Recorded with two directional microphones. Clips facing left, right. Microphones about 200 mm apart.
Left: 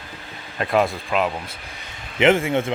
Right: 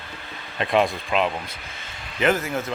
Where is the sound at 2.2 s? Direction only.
25° left (ahead or behind).